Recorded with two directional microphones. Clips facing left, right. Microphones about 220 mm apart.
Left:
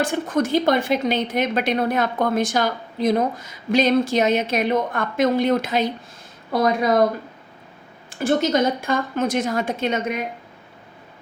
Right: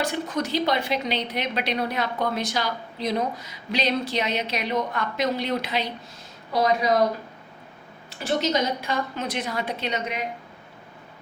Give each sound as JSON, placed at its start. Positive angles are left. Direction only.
{"t": 0.0, "sound": "a woman's voice", "side_deg": 50}
{"t": 8.1, "sound": "a woman's voice", "side_deg": 50}